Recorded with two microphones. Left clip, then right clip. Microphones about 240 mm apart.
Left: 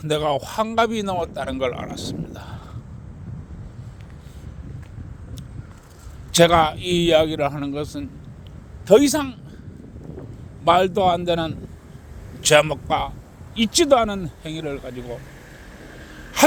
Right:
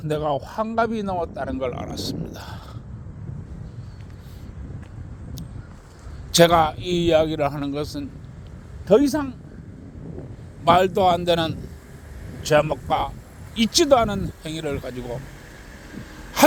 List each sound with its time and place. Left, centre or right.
0.0 s a man's voice: centre
6.3 s a man's voice: centre
8.9 s a man's voice: centre
10.6 s a man's voice: centre
12.4 s a man's voice: left
12.6 s a man's voice: centre